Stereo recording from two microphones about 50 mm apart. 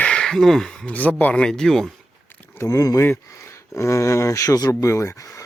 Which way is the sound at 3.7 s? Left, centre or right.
Left.